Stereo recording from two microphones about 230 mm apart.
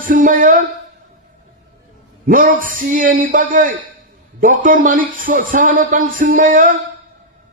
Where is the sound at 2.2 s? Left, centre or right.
Right.